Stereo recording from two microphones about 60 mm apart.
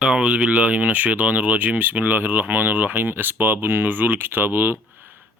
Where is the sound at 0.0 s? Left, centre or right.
Centre.